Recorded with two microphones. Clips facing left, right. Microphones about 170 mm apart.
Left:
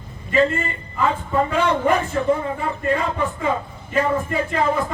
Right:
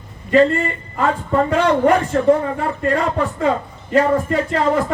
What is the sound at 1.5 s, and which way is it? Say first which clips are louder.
Speech: right 7 dB; 70° right (ahead or behind).